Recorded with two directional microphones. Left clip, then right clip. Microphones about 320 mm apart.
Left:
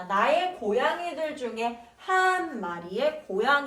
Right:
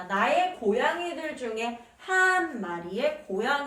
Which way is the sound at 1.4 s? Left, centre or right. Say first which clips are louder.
Right 1 dB; centre.